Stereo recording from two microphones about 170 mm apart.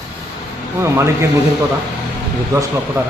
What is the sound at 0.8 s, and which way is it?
Speech, 15° right (ahead or behind).